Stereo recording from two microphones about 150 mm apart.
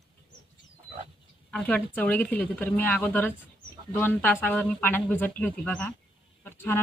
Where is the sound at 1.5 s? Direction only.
10° left (ahead or behind).